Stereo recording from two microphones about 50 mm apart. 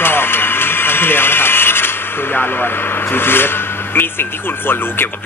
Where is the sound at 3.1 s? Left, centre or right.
Left.